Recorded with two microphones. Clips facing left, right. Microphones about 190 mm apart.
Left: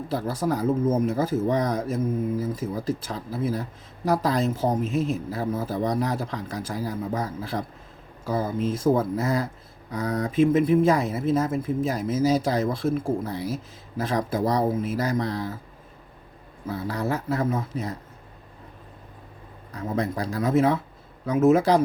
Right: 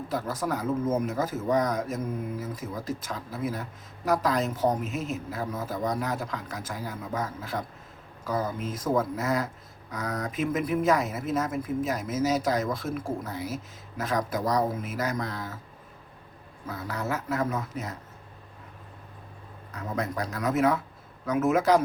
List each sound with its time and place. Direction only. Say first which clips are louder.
0.1 s speech: left 4 dB; 30° left (ahead or behind)
16.6 s speech: left 5 dB; 30° left (ahead or behind)
19.7 s speech: left 4 dB; 30° left (ahead or behind)